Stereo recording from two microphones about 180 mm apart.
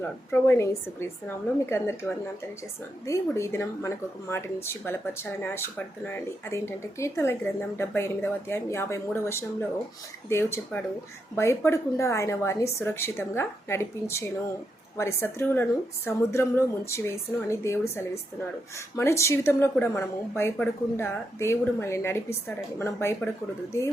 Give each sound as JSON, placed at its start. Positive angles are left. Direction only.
{"t": 0.0, "sound": "a woman's voice", "side_deg": 10}